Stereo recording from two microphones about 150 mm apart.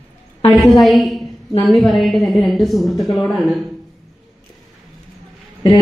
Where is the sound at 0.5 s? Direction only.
Centre (ahead or behind).